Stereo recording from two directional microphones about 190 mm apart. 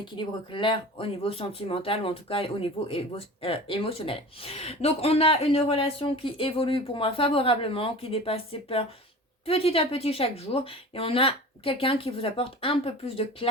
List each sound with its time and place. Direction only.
0.0 s speech: 25° left (ahead or behind)